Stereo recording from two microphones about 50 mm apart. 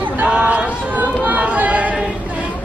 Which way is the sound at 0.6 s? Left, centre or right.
Right.